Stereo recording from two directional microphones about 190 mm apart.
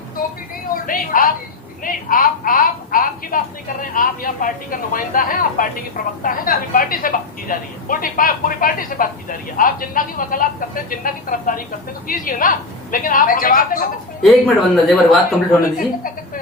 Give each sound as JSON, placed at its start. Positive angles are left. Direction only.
{"t": 0.9, "sound": "speech", "side_deg": 45}
{"t": 14.2, "sound": "speech", "side_deg": 0}